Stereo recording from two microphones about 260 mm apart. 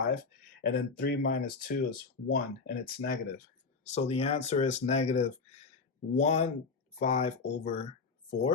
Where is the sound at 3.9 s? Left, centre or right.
Left.